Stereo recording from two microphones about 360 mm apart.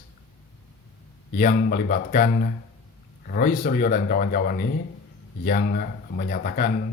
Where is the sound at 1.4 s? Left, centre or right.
Left.